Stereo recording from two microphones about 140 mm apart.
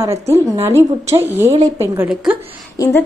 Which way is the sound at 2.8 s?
25° left (ahead or behind).